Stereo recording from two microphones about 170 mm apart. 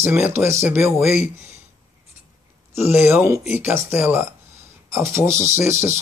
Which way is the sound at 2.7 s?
15° right (ahead or behind).